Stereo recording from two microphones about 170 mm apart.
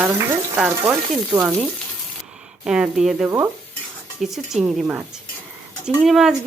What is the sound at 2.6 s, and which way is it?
Speech, 5° right (ahead or behind).